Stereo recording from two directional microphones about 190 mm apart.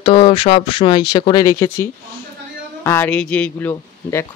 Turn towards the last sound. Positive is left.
turn(degrees=10)  # may be behind; listen again after turning